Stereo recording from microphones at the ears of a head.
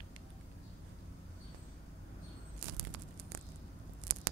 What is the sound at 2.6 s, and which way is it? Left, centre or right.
Tearing, right.